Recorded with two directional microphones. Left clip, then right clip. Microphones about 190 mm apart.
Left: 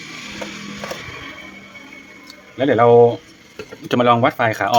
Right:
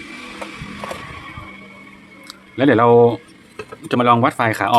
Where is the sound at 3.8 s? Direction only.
Centre (ahead or behind).